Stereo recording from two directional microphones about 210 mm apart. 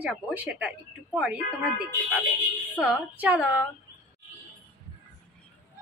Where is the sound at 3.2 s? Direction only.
5° right (ahead or behind).